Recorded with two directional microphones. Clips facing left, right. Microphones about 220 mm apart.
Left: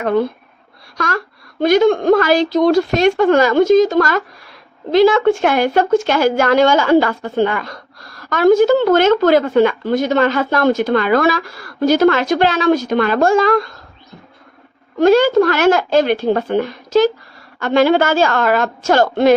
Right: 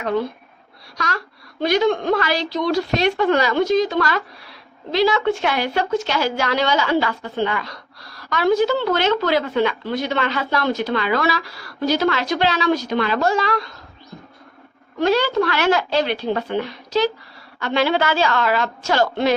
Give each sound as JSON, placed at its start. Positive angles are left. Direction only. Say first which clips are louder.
{"t": 0.9, "sound": "a woman's voice", "louder": "left 6 dB", "side_deg": 50}
{"t": 14.9, "sound": "a woman's voice", "louder": "left 7 dB", "side_deg": 45}